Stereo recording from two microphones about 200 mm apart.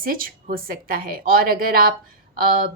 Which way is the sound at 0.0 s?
45° right (ahead or behind).